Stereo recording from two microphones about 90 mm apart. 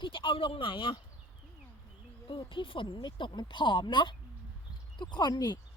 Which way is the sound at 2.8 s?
50° left (ahead or behind).